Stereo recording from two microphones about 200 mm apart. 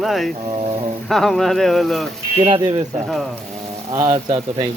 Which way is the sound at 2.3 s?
30° right (ahead or behind).